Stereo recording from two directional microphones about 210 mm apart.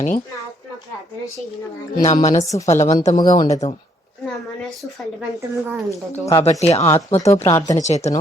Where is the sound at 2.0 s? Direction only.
30° left (ahead or behind).